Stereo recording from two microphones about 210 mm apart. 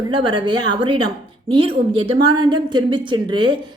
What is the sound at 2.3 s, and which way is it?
A woman's voice, 20° right (ahead or behind).